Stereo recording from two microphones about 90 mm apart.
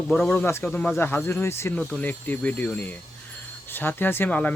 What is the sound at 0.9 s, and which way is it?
Speech, 25° left (ahead or behind).